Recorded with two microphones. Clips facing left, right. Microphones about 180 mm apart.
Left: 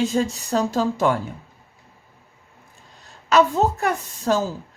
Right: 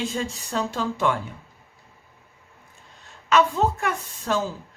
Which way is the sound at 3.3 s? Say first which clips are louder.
Left 3 dB; 40° left (ahead or behind).